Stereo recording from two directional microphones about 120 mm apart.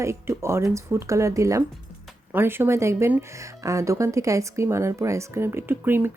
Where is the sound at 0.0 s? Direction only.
20° right (ahead or behind).